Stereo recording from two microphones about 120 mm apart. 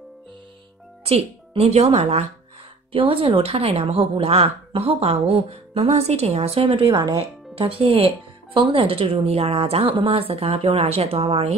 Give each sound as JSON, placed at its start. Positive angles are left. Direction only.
{"t": 1.0, "sound": "a woman's voice", "side_deg": -55}
{"t": 2.9, "sound": "a woman's voice", "side_deg": -50}